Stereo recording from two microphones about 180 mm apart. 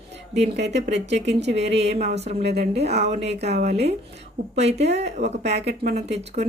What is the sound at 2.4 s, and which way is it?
Speech, 65° right (ahead or behind).